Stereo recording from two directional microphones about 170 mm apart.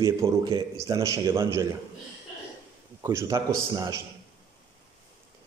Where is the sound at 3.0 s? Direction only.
15° right (ahead or behind).